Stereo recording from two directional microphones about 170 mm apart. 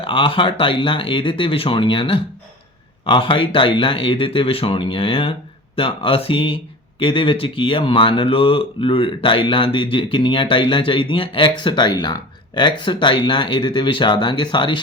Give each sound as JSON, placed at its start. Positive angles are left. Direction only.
{"t": 0.0, "sound": "speech", "side_deg": 30}